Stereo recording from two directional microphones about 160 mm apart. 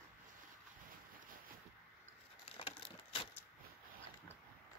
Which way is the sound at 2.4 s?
35° left (ahead or behind).